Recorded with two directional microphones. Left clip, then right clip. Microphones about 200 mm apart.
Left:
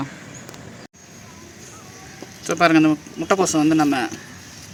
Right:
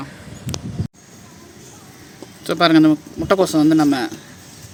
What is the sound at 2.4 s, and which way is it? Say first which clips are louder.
Speech: right 2 dB; 20° right (ahead or behind).